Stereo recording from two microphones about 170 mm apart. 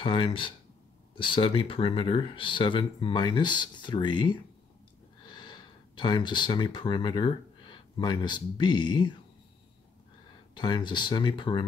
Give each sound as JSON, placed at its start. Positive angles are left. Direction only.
{"t": 0.0, "sound": "speech", "side_deg": 30}
{"t": 10.5, "sound": "speech", "side_deg": 25}